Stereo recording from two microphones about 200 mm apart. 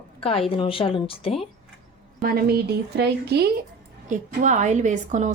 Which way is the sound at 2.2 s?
50° right (ahead or behind).